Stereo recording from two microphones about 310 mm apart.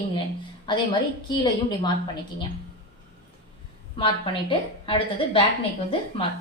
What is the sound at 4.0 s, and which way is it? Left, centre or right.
A woman's voice, centre.